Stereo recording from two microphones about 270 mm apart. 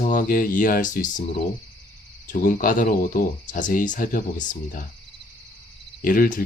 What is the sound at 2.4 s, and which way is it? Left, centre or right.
Speech, left.